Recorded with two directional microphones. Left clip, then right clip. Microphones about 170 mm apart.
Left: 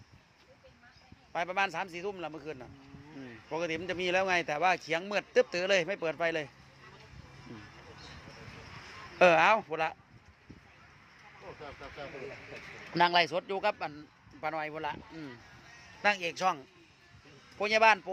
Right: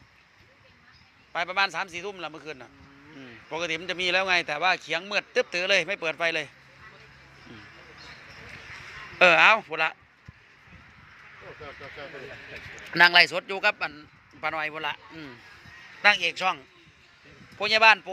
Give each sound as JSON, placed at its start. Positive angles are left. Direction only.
{"t": 1.3, "sound": "a man's voice", "side_deg": 15}
{"t": 9.1, "sound": "a man's voice", "side_deg": 15}
{"t": 12.9, "sound": "a man's voice", "side_deg": 5}